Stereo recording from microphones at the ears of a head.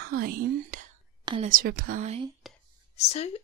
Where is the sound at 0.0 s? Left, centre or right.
Right.